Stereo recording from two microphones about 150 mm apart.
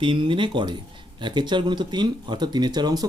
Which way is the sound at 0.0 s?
35° right (ahead or behind).